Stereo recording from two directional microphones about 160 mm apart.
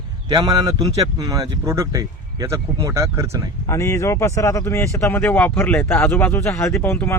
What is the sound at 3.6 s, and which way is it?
A man's voice, 15° left (ahead or behind).